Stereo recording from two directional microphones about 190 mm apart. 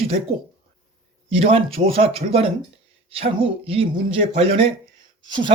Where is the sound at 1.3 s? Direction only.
30° right (ahead or behind).